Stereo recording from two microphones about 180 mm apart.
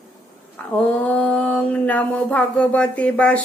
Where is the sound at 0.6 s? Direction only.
10° left (ahead or behind).